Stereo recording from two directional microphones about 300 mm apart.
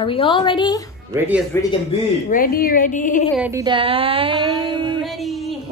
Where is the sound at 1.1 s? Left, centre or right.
Centre.